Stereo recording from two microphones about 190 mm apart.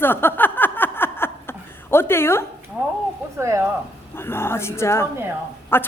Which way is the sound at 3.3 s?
15° right (ahead or behind).